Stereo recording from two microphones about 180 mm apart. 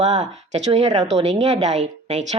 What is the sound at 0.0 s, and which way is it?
Speech, 40° right (ahead or behind).